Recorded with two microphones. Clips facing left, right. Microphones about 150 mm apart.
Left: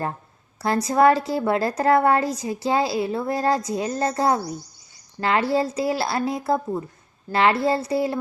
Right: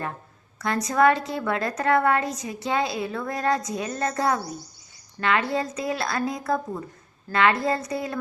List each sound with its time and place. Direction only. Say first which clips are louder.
0.6 s a woman's voice: left 3 dB; 30° left (ahead or behind)